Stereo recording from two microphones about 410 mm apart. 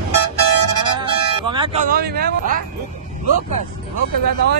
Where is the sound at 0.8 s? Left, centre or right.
Centre.